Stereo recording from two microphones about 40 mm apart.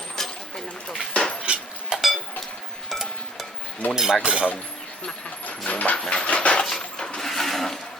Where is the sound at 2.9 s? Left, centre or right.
Centre.